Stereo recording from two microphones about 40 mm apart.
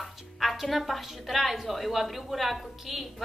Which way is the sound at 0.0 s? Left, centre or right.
Centre.